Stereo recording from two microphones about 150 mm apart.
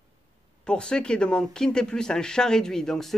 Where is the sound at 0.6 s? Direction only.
5° left (ahead or behind).